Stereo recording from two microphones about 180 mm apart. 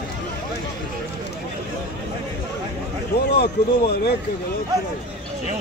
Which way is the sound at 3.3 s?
65° left (ahead or behind).